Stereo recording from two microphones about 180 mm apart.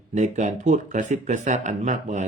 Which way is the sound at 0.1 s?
40° right (ahead or behind).